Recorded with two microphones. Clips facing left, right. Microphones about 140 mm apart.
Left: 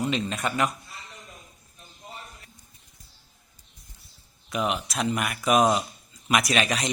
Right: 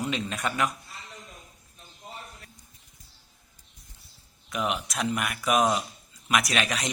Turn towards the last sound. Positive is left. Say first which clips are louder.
# left 3 dB
turn(degrees=0)  # may be behind; listen again after turning